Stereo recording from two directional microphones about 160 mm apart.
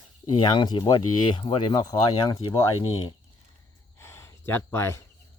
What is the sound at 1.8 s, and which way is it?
Speech, 20° left (ahead or behind).